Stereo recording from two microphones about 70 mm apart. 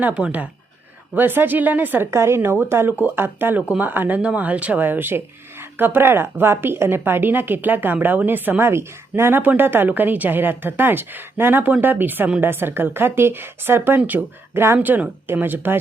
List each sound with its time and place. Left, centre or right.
0.1 s speech: centre
2.0 s speech: right
9.4 s speech: right